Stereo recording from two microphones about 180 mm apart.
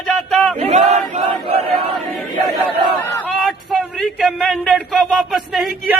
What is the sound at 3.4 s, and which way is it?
Speech, centre (ahead or behind).